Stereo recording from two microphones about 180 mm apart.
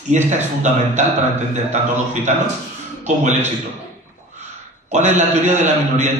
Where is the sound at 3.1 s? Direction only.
40° right (ahead or behind).